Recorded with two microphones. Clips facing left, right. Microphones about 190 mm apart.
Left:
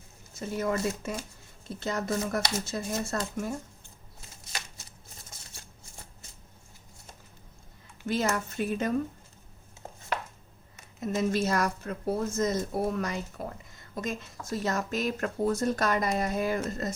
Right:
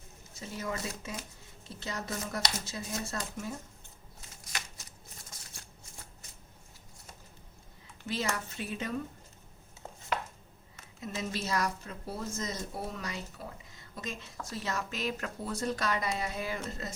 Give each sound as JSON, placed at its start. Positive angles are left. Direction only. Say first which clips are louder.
{"t": 0.3, "sound": "speech", "louder": "left 8 dB", "side_deg": 55}
{"t": 4.4, "sound": "shuffling cards", "louder": "left 1 dB", "side_deg": 30}
{"t": 8.0, "sound": "speech", "louder": "left 6 dB", "side_deg": 50}
{"t": 11.0, "sound": "speech", "louder": "left 9 dB", "side_deg": 50}